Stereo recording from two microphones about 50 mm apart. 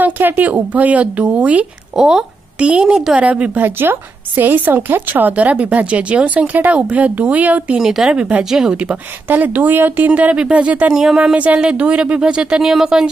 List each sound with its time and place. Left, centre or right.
0.0 s speech: right
2.0 s speech: centre; by 3.6 s right
3.6 s speech: right
4.4 s speech: right
7.7 s speech: centre
8.1 s speech: right
8.5 s speech: centre
9.3 s speech: right
10.3 s speech: right
10.9 s speech: centre
11.3 s speech: right
12.6 s speech: centre